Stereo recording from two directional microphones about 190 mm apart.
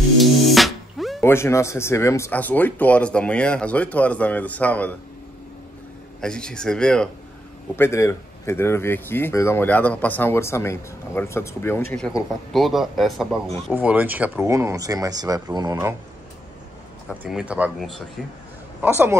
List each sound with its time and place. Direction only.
0.2 s music: centre (ahead or behind)
1.2 s speech: 15° left (ahead or behind)
6.2 s speech: 5° left (ahead or behind); by 15.9 s 20° right (ahead or behind)
17.2 s speech: 5° right (ahead or behind)
18.8 s speech: 10° right (ahead or behind)